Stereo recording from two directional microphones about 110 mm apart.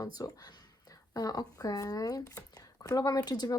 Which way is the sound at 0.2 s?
35° left (ahead or behind).